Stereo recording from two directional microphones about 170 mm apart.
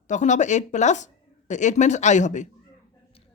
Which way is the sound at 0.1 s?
45° left (ahead or behind).